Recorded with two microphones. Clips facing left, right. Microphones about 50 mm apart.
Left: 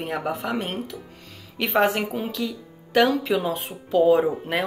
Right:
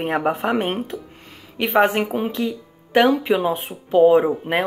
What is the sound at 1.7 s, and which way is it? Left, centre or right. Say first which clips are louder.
Speech: right 4 dB; centre.